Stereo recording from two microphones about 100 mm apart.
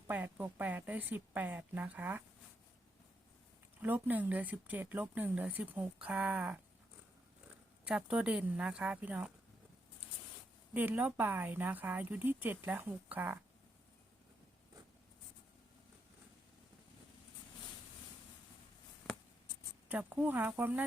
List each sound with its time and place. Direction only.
0.1 s speech: 15° right (ahead or behind)
3.8 s speech: 15° right (ahead or behind)
7.9 s speech: 10° right (ahead or behind)
10.8 s speech: 20° right (ahead or behind)
19.1 s writing: 5° left (ahead or behind)
19.9 s speech: 15° right (ahead or behind)